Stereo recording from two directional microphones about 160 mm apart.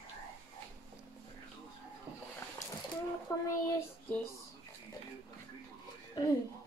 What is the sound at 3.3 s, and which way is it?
Child singing, 20° left (ahead or behind).